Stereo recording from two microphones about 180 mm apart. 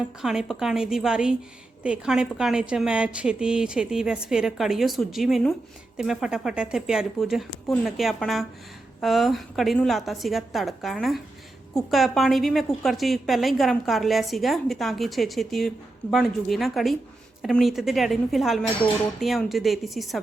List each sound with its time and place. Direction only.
0.2 s a woman's voice: centre (ahead or behind)